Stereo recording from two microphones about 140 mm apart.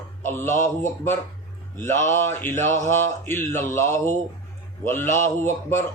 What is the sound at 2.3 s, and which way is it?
A man's voice, 15° left (ahead or behind).